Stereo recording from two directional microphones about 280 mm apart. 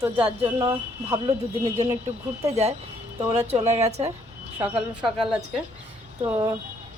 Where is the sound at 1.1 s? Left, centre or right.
Centre.